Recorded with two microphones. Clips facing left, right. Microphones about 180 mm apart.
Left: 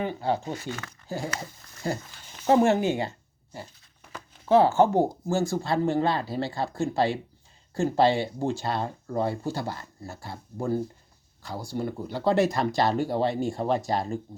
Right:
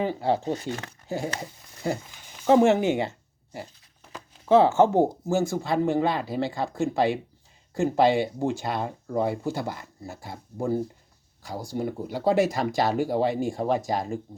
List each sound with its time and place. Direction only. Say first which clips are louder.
0.2 s speech: right 3 dB; 30° right (ahead or behind)
4.4 s speech: right 1 dB; 20° right (ahead or behind)